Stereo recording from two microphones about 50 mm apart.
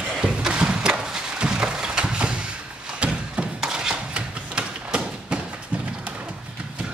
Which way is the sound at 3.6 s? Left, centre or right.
Centre.